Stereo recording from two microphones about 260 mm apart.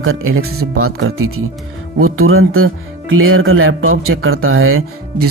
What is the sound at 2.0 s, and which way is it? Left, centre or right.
Speech, right.